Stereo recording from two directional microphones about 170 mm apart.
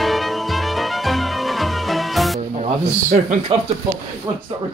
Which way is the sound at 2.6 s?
45° right (ahead or behind).